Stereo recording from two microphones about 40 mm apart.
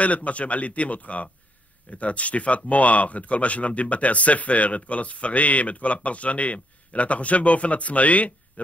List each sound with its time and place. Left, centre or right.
0.0 s speech: left